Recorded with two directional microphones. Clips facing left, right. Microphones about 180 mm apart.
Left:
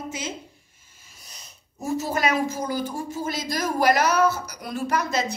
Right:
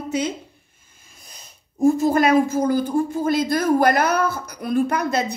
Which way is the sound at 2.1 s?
55° right (ahead or behind).